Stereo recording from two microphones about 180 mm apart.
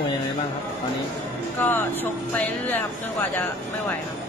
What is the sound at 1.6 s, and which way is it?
Speech, 10° left (ahead or behind).